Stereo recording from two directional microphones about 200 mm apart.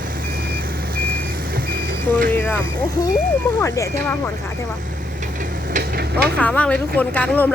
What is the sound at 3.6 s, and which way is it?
Speech, 15° left (ahead or behind).